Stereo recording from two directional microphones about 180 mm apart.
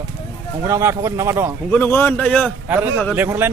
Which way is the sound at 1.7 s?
10° left (ahead or behind).